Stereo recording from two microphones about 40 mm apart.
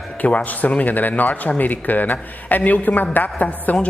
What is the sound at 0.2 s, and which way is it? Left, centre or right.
A woman's voice, left.